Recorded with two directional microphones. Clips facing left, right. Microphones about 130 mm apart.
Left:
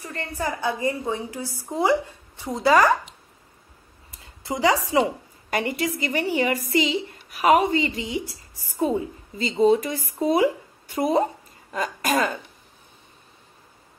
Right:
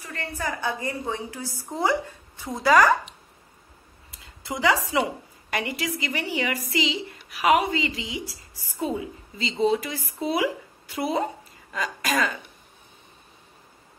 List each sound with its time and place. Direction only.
0.0 s a woman's voice: 30° left (ahead or behind)
4.2 s speech: 30° left (ahead or behind)
5.5 s a woman's voice: 40° left (ahead or behind)